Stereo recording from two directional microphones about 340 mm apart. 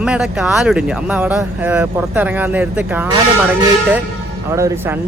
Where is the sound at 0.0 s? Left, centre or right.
Centre.